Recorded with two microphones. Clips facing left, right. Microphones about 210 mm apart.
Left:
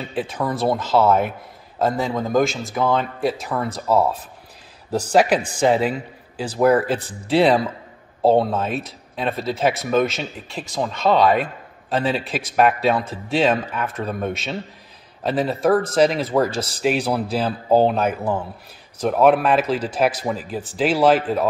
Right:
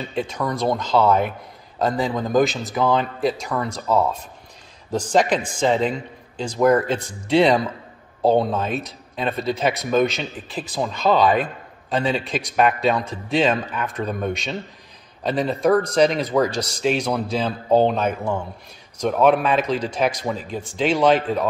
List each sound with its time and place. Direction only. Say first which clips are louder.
0.1 s a man's voice: left 1 dB; 5° left (ahead or behind)